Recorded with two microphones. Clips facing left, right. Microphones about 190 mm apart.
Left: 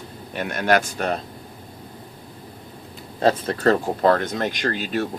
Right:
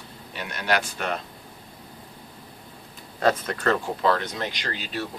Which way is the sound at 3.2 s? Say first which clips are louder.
Left 3 dB; 30° left (ahead or behind).